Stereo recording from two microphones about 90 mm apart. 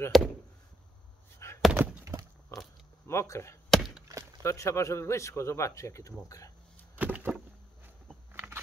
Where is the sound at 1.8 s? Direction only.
30° right (ahead or behind).